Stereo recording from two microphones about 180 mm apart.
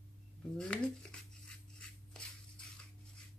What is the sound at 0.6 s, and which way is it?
Speech, 5° left (ahead or behind).